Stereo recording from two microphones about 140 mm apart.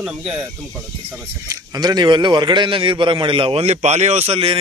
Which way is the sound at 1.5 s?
25° right (ahead or behind).